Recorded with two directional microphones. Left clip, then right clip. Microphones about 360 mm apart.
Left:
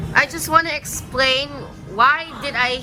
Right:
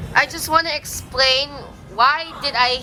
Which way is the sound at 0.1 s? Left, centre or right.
Centre.